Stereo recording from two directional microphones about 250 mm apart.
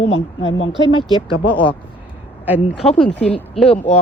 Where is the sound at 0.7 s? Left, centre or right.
Centre.